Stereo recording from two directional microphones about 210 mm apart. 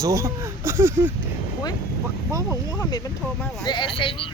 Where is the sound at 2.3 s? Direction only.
15° left (ahead or behind).